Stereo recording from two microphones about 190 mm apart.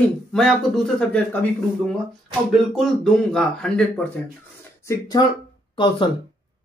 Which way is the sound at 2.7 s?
Centre (ahead or behind).